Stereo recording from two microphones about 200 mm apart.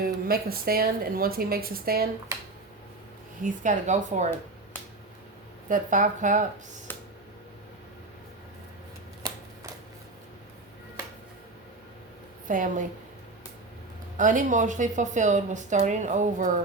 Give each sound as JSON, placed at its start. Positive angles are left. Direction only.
{"t": 0.0, "sound": "a woman's voice", "side_deg": -45}
{"t": 3.4, "sound": "speech", "side_deg": -40}
{"t": 5.6, "sound": "speech", "side_deg": -40}
{"t": 12.5, "sound": "speech", "side_deg": -40}
{"t": 14.2, "sound": "speech", "side_deg": -40}